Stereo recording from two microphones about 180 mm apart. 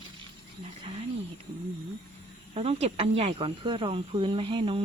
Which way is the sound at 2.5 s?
35° right (ahead or behind).